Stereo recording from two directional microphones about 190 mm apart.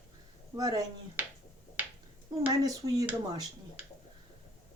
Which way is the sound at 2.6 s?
20° right (ahead or behind).